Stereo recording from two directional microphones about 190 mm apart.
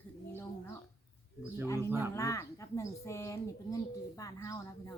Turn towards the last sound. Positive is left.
turn(degrees=15)  # may be behind; listen again after turning